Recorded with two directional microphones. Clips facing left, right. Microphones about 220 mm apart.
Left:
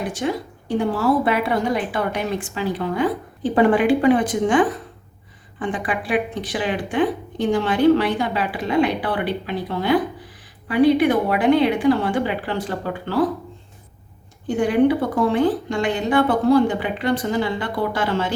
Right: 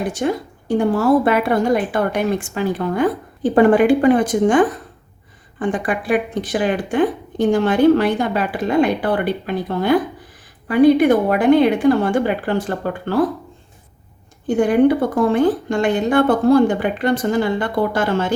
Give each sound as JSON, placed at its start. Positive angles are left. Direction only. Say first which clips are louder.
{"t": 0.1, "sound": "speech", "louder": "right 3 dB", "side_deg": -45}
{"t": 14.4, "sound": "speech", "louder": "right 3 dB", "side_deg": -50}